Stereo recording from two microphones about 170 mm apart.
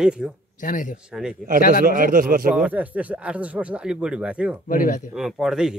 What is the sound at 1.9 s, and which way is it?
Speech, 55° right (ahead or behind).